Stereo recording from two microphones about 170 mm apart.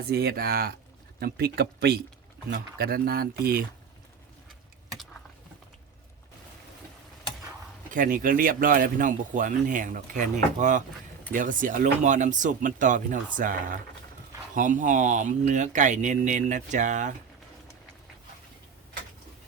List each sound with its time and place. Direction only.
0.0 s speech: 65° right (ahead or behind)
7.9 s speech: 50° right (ahead or behind)